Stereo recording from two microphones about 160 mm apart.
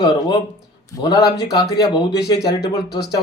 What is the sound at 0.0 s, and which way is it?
Speech, 25° left (ahead or behind).